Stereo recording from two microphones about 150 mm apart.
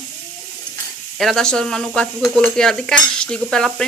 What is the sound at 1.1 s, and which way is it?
Speech, centre (ahead or behind).